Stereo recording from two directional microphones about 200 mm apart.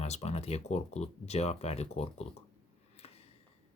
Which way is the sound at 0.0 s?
30° left (ahead or behind).